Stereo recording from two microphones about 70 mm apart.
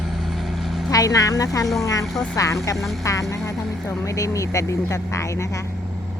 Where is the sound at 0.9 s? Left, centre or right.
Left.